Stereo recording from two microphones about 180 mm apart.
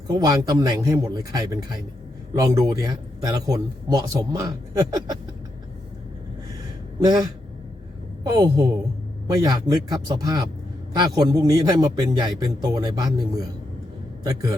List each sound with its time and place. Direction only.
0.1 s a man's voice: 20° right (ahead or behind)
7.0 s a man's voice: 20° right (ahead or behind)
8.3 s a man's voice: 20° right (ahead or behind)